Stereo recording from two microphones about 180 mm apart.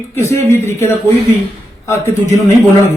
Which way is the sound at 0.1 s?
15° left (ahead or behind).